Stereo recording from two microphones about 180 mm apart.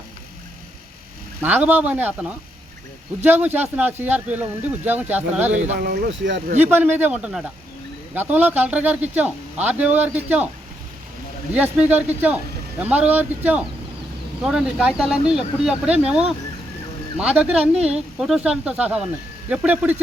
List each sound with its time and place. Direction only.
1.4 s speech: 10° right (ahead or behind)
5.8 s speech: 75° right (ahead or behind)
6.6 s speech: 10° right (ahead or behind)
11.5 s speech: 10° right (ahead or behind)
17.6 s speech: 35° right (ahead or behind)
17.9 s speech: 5° right (ahead or behind)